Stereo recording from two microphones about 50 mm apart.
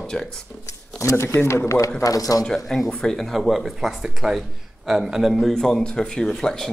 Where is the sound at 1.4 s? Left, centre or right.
Left.